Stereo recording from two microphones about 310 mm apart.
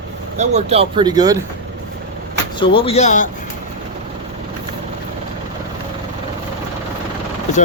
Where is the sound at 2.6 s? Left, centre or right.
Centre.